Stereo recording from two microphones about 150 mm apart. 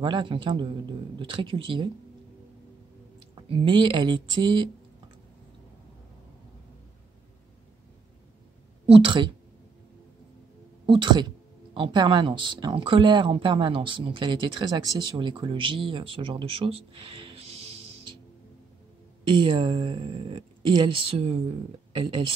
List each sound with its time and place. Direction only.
0.0 s a woman's voice: 30° right (ahead or behind)
3.3 s a woman's voice: 35° right (ahead or behind)
8.8 s a woman's voice: 35° right (ahead or behind)
10.9 s a woman's voice: 30° right (ahead or behind)
19.3 s a woman's voice: 35° right (ahead or behind)